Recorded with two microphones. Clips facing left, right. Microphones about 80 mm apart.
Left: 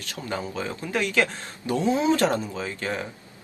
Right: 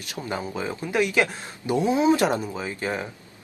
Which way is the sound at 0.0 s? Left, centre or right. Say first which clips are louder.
Right 1 dB; centre.